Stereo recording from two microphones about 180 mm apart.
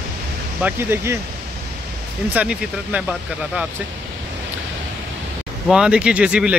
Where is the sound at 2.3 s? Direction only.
5° right (ahead or behind).